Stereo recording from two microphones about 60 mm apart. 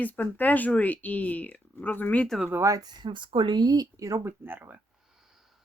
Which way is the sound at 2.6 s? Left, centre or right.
Right.